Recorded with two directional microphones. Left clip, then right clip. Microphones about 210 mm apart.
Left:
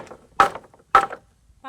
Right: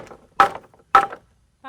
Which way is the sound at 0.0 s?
10° right (ahead or behind).